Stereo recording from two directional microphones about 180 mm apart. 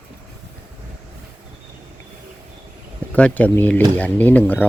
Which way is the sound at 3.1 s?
10° left (ahead or behind).